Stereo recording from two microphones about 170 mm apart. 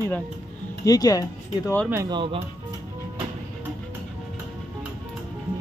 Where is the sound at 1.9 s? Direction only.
20° right (ahead or behind).